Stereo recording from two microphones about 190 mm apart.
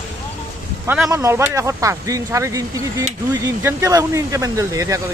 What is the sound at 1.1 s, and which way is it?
Speech, 15° right (ahead or behind).